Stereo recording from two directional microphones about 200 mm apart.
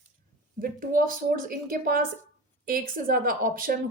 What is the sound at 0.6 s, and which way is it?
A woman's voice, 45° right (ahead or behind).